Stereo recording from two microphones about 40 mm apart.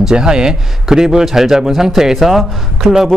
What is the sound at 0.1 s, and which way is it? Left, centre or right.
A man's voice, centre.